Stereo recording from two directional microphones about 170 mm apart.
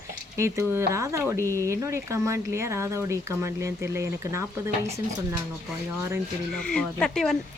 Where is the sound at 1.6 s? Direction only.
15° right (ahead or behind).